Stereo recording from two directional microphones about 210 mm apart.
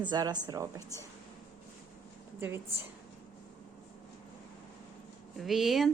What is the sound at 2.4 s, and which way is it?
Speech, 10° right (ahead or behind).